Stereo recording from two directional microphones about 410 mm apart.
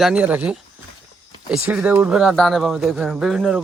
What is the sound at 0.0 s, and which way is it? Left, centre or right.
Speech, centre.